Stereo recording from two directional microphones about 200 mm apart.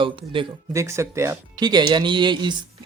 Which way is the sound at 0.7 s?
15° right (ahead or behind).